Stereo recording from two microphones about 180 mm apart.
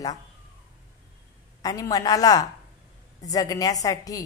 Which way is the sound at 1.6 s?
20° left (ahead or behind).